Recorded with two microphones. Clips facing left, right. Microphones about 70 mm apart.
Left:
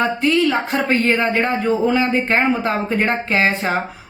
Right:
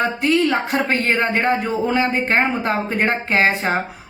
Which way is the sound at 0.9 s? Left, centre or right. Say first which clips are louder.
Left 4 dB; right.